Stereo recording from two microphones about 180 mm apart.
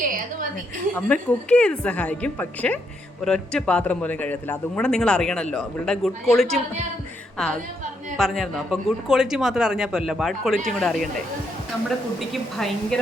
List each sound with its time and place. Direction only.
0.0 s a sound: 50° right (ahead or behind)
0.9 s a woman's voice: 10° left (ahead or behind)
12.3 s a man's voice: centre (ahead or behind)